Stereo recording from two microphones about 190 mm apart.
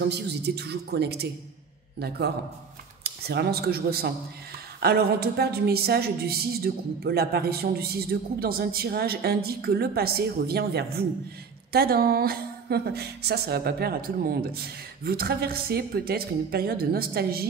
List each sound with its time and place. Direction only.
0.1 s a woman's voice: 60° right (ahead or behind)